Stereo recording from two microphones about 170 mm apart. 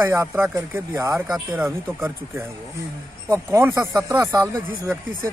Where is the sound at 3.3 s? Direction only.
15° right (ahead or behind).